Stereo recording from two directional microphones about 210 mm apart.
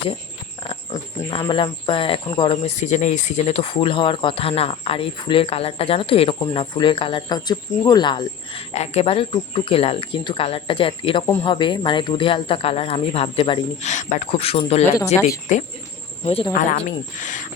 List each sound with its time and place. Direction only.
0.7 s speech: 25° left (ahead or behind)